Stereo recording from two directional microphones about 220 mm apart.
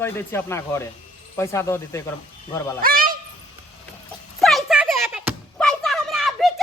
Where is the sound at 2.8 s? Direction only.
40° right (ahead or behind).